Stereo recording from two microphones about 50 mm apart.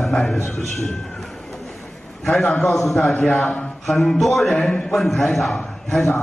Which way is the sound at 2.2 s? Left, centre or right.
Left.